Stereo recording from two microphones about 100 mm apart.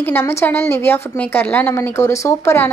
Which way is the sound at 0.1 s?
25° left (ahead or behind).